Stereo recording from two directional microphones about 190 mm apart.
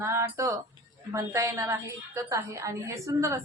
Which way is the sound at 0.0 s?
15° right (ahead or behind).